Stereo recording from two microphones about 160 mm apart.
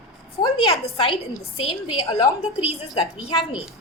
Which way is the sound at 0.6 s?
35° left (ahead or behind).